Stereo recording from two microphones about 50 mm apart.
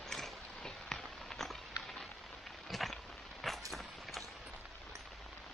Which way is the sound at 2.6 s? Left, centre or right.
Centre.